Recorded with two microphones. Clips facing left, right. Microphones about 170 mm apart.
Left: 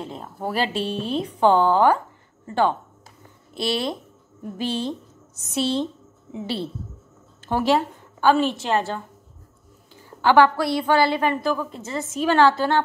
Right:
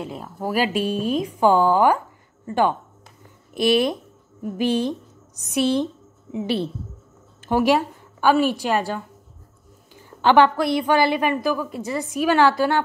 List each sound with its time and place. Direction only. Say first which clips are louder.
0.0 s a woman's voice: right 2 dB; 5° right (ahead or behind)
3.5 s a woman's voice: right 6 dB; 15° right (ahead or behind)
10.2 s a woman's voice: right 1 dB; 20° right (ahead or behind)